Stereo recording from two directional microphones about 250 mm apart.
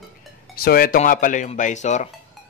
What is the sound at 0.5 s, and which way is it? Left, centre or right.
Speech, left.